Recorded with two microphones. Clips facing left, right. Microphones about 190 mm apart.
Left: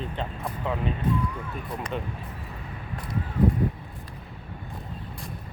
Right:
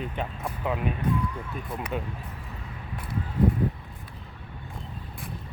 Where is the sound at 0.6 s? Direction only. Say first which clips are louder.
Right 1 dB; 15° right (ahead or behind).